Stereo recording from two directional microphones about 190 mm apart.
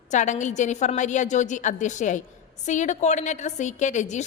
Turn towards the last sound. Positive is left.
turn(degrees=40)  # may be behind; listen again after turning